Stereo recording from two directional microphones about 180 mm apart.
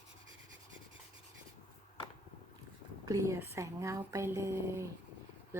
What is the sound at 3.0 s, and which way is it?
Speech, 20° right (ahead or behind).